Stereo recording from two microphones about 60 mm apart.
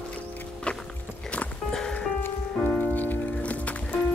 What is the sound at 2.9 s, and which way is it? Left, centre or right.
Music, left.